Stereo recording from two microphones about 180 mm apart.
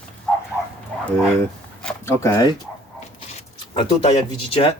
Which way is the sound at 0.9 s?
5° left (ahead or behind).